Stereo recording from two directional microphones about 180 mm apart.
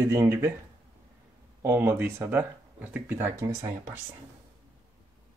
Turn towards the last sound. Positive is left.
turn(degrees=-15)  # may be behind; listen again after turning